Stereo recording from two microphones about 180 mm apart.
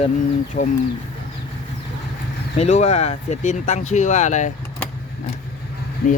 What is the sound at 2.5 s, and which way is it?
Speech, 40° left (ahead or behind).